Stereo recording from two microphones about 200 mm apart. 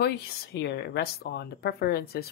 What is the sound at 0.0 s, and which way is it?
Speech, 55° left (ahead or behind).